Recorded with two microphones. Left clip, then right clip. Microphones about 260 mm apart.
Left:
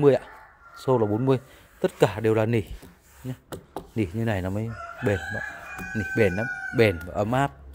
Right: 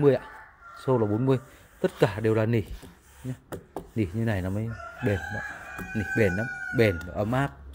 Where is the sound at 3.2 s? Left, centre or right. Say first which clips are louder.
Left 1 dB; centre.